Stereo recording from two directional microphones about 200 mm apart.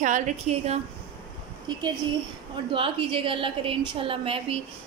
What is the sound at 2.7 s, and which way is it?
A woman's voice, 25° right (ahead or behind).